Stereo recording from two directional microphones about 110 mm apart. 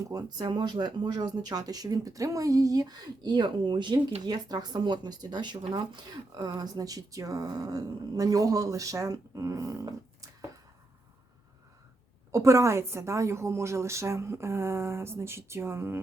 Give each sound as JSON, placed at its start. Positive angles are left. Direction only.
{"t": 0.0, "sound": "speech", "side_deg": -35}
{"t": 12.3, "sound": "a woman's voice", "side_deg": -30}